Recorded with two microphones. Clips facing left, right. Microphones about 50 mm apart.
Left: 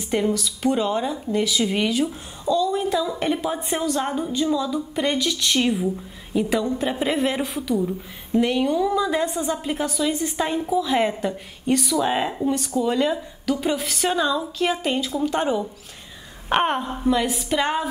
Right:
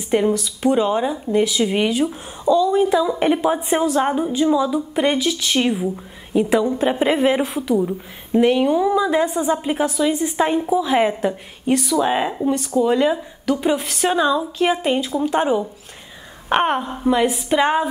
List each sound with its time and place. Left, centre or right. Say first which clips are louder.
0.1 s a woman's voice: right 4 dB; right
4.5 s speech: right 5 dB; right
5.2 s a woman's voice: right 2 dB; centre